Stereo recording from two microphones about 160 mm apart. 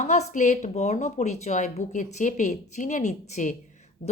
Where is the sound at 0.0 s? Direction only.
50° left (ahead or behind).